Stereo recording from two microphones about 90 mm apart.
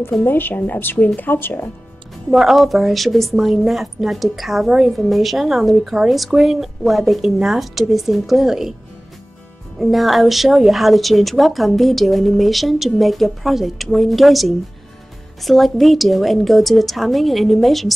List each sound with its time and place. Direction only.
0.2 s speech: 20° left (ahead or behind)
2.3 s a woman's voice: centre (ahead or behind)
9.8 s a woman's voice: centre (ahead or behind)